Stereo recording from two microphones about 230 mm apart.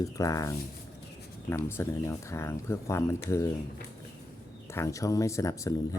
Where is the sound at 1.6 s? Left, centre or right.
Centre.